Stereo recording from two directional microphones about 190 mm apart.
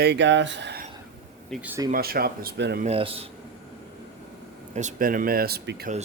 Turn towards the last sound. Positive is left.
turn(degrees=-55)  # may be behind; listen again after turning